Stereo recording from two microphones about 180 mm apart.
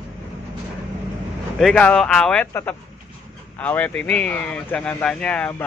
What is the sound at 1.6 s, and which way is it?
Speech, 5° left (ahead or behind).